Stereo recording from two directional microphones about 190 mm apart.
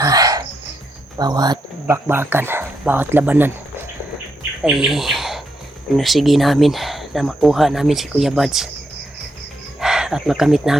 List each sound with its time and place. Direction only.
0.0 s a sound: 20° right (ahead or behind)
1.2 s speech: 20° right (ahead or behind)
4.6 s speech: 5° right (ahead or behind)
9.8 s speech: 5° right (ahead or behind)